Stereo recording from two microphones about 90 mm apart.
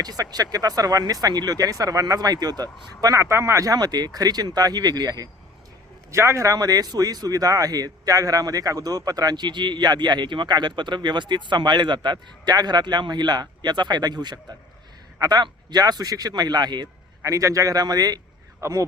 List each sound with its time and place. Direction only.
0.0 s speech: 45° right (ahead or behind)
3.2 s speech: 30° right (ahead or behind); by 5.3 s 45° right (ahead or behind)
6.1 s speech: 30° right (ahead or behind); by 16.9 s 50° right (ahead or behind)
17.2 s a man's voice: 35° right (ahead or behind)